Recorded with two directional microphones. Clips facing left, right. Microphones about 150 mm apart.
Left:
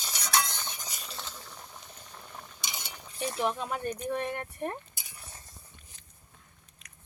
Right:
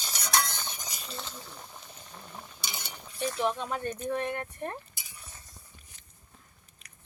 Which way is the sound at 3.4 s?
5° left (ahead or behind).